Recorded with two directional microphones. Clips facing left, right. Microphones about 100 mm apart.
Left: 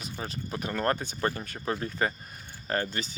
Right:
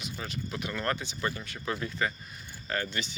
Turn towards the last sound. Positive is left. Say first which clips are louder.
# left 3 dB
turn(degrees=40)  # may be behind; listen again after turning